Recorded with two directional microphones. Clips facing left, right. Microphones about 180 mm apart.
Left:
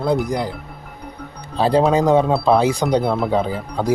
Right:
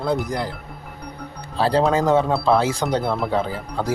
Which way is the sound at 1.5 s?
20° left (ahead or behind).